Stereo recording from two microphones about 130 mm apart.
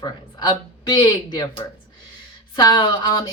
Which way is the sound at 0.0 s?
30° left (ahead or behind).